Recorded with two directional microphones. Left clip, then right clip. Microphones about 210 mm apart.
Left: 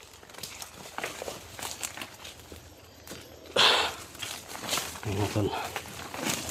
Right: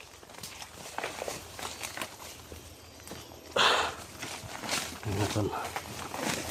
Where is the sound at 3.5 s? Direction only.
10° left (ahead or behind).